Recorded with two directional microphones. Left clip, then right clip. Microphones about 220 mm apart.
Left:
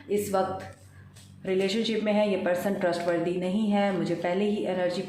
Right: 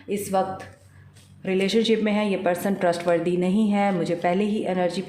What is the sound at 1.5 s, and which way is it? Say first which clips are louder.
Speech: right 5 dB; 55° right (ahead or behind).